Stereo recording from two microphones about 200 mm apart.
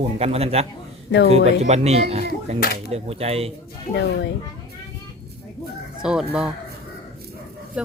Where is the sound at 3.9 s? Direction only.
55° left (ahead or behind).